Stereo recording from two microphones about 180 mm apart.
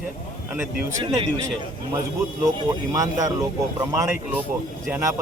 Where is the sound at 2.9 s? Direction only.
20° right (ahead or behind).